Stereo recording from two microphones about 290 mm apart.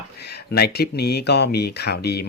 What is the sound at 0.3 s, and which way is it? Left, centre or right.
Speech, left.